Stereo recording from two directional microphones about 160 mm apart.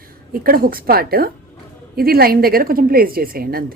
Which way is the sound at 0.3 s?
65° right (ahead or behind).